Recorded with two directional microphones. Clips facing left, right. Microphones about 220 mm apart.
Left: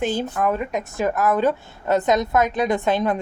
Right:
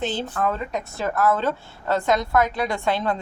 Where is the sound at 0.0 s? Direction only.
10° left (ahead or behind).